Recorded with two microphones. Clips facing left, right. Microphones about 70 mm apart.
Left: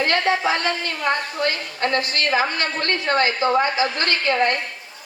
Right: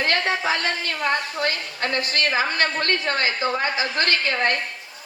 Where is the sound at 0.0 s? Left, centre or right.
Left.